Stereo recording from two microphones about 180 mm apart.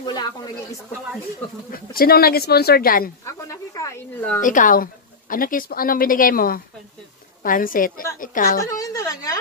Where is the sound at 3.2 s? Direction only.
15° left (ahead or behind).